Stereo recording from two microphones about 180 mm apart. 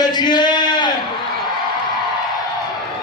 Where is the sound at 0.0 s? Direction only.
25° left (ahead or behind).